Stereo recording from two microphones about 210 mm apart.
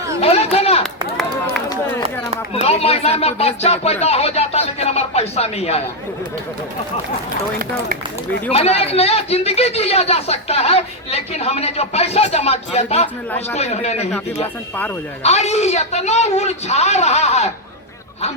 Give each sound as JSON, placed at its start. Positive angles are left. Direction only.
{"t": 0.2, "sound": "a sound", "side_deg": 30}
{"t": 2.5, "sound": "speech", "side_deg": 30}
{"t": 8.5, "sound": "a man's voice", "side_deg": 30}
{"t": 15.2, "sound": "a man's voice", "side_deg": 30}